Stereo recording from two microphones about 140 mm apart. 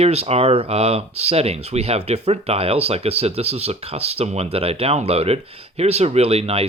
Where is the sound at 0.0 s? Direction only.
50° right (ahead or behind).